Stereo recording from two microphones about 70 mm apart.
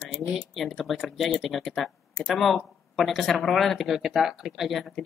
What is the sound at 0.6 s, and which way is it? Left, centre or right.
Speech, centre.